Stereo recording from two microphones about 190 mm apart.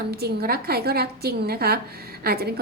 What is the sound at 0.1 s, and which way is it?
A woman's voice, 55° right (ahead or behind).